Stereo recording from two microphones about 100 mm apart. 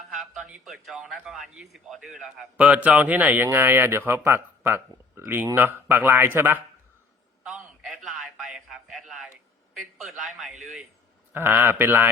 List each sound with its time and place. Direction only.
0.1 s a man's voice: 5° right (ahead or behind); by 6.6 s 20° right (ahead or behind)
7.4 s a sound: 5° right (ahead or behind)
9.7 s a man's voice: centre (ahead or behind); by 12.1 s 20° right (ahead or behind)